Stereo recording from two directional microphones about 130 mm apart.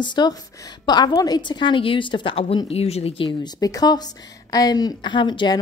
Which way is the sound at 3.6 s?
30° left (ahead or behind).